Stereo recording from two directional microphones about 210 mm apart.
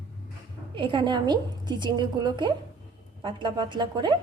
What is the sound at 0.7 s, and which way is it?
A woman's voice, 25° right (ahead or behind).